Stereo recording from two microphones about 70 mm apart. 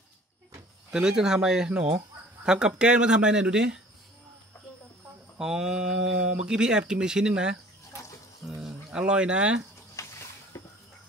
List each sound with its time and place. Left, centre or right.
0.9 s speech: centre
5.4 s speech: centre
10.0 s a sound: left